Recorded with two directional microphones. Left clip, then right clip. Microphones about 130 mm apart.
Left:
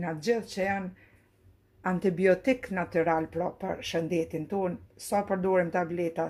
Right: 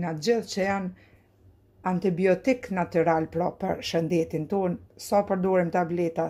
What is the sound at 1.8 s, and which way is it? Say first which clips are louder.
Speech: right 1 dB; centre (ahead or behind).